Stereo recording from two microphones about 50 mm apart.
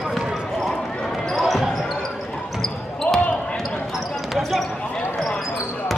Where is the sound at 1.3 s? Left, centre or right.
Centre.